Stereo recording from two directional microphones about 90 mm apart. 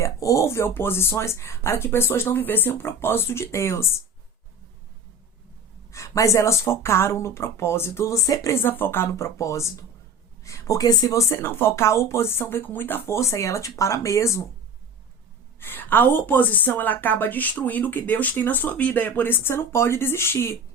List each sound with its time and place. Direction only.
0.0 s a woman's voice: 35° left (ahead or behind)
5.9 s speech: 35° left (ahead or behind)
8.6 s speech: 25° left (ahead or behind)
11.3 s speech: 25° left (ahead or behind)
15.6 s a woman's voice: 20° left (ahead or behind)